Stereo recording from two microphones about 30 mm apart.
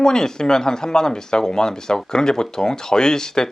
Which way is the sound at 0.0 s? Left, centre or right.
Left.